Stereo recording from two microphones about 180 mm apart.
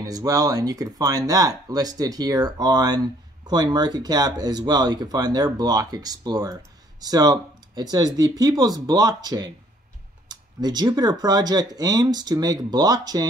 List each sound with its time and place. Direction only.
0.0 s speech: 20° right (ahead or behind)